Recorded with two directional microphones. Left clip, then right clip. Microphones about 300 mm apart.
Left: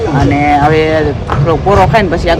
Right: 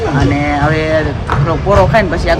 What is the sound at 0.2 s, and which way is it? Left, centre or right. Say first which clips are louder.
Speech: left 7 dB; centre.